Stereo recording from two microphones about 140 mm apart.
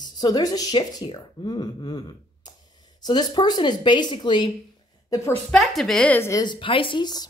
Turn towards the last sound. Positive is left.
turn(degrees=30)  # may be behind; listen again after turning